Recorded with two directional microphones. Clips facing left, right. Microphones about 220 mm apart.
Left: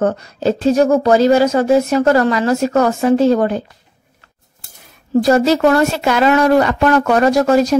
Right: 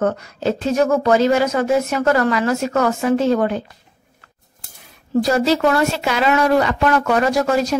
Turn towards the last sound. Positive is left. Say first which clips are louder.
# left 5 dB
turn(degrees=40)  # may be behind; listen again after turning